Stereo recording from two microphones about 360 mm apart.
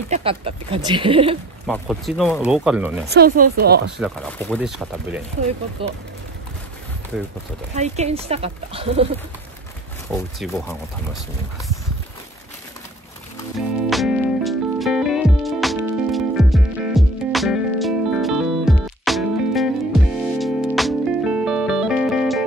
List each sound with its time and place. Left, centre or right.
0.1 s speech: centre
1.7 s speech: centre
3.1 s speech: right
4.0 s speech: centre
5.8 s speech: centre
7.7 s speech: centre
10.1 s speech: centre
13.8 s music: centre